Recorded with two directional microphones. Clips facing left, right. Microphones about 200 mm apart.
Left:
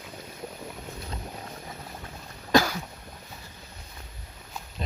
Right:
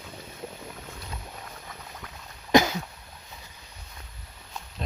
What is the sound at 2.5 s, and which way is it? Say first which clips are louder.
Cough: right 2 dB; 20° right (ahead or behind).